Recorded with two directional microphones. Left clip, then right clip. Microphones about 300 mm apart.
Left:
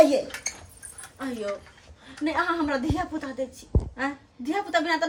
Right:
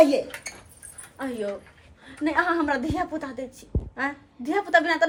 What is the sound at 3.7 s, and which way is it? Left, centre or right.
Speech, right.